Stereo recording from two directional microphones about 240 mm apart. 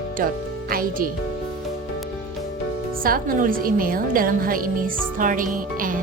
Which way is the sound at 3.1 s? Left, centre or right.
Right.